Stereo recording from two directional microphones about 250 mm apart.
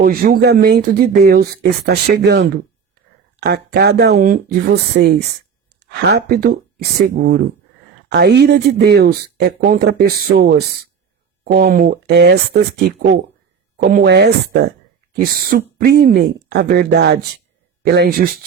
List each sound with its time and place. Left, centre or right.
0.0 s speech: right
13.7 s speech: right